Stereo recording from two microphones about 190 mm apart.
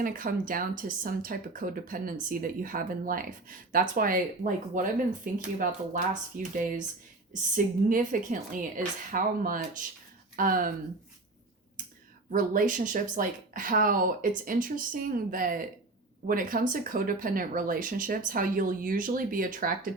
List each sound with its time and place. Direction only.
0.0 s speech: 45° right (ahead or behind)
12.3 s speech: 45° right (ahead or behind)